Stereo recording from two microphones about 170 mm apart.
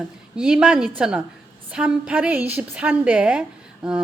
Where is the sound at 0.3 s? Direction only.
5° right (ahead or behind).